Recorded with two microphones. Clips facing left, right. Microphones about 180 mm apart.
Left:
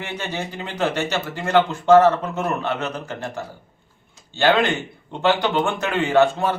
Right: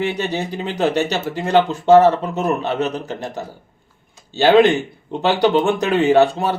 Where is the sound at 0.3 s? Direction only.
15° right (ahead or behind).